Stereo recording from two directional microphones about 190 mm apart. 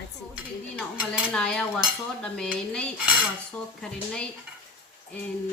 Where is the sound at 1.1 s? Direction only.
5° left (ahead or behind).